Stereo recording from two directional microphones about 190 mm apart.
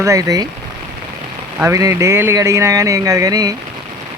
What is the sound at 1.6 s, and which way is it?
Speech, 15° right (ahead or behind).